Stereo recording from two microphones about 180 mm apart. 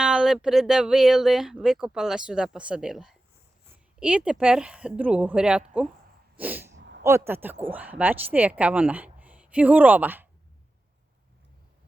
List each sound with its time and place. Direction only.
0.0 s speech: 5° right (ahead or behind)
6.3 s sneeze: 10° right (ahead or behind)
6.7 s a sound: 80° right
7.0 s a woman's voice: 15° right (ahead or behind)